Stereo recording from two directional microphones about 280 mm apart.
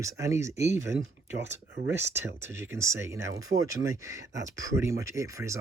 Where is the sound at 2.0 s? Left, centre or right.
Centre.